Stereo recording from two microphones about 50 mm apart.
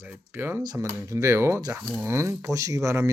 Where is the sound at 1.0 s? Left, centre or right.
Right.